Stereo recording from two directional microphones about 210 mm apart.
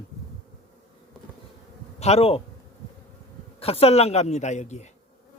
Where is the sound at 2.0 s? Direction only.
30° left (ahead or behind).